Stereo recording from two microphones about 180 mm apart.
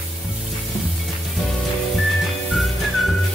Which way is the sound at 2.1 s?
Centre (ahead or behind).